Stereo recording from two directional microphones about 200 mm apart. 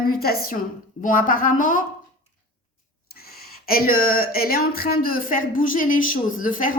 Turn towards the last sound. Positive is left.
turn(degrees=40)  # may be behind; listen again after turning